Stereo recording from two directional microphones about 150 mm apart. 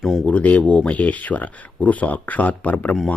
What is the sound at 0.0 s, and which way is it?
Speech, centre (ahead or behind).